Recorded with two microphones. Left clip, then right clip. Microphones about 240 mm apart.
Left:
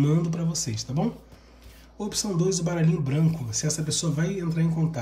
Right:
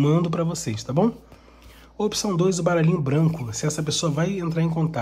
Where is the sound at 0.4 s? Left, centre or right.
Centre.